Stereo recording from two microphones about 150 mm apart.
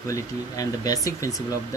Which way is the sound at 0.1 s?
25° left (ahead or behind).